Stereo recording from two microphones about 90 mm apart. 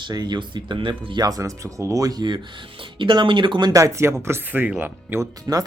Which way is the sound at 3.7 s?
35° right (ahead or behind).